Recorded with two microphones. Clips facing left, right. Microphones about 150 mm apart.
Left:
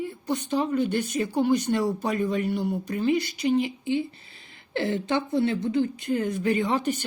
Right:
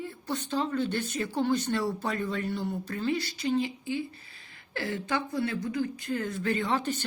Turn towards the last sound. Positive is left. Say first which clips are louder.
# left 4 dB
turn(degrees=15)  # may be behind; listen again after turning